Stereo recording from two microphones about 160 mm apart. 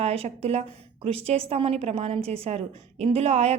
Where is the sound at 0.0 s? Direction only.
40° right (ahead or behind).